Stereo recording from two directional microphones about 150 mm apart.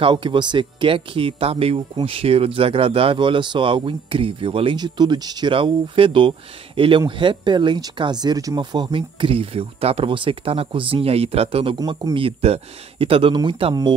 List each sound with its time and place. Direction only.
0.0 s speech: 35° right (ahead or behind)